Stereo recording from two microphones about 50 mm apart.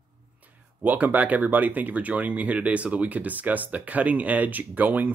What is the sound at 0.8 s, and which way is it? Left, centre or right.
Speech, right.